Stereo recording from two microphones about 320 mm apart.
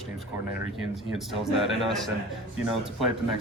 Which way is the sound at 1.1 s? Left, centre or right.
Centre.